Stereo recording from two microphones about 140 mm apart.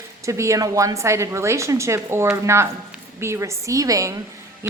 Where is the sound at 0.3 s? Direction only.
20° right (ahead or behind).